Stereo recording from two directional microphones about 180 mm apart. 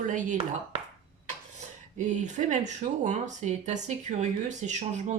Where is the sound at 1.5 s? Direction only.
40° right (ahead or behind).